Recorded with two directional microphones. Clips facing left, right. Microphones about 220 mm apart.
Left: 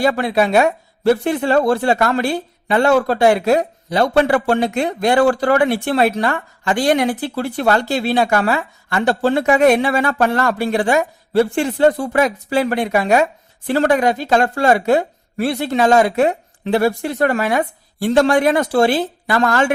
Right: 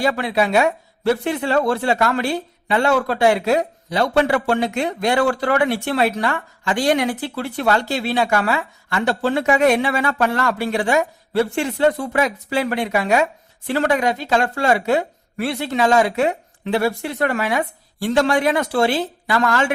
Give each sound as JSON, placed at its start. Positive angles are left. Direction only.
{"t": 0.0, "sound": "speech", "side_deg": 45}
{"t": 3.8, "sound": "speech", "side_deg": 35}